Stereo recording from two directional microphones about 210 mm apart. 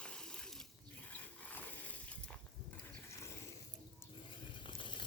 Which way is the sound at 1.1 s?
10° left (ahead or behind).